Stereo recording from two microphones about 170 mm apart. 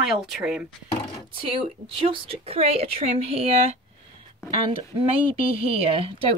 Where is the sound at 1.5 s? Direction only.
30° right (ahead or behind).